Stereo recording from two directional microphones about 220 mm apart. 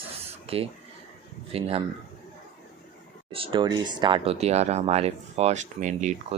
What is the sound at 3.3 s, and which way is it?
Speech, 25° right (ahead or behind).